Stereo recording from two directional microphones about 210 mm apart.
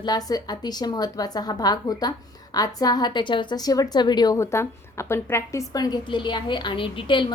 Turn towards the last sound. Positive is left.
turn(degrees=25)  # may be behind; listen again after turning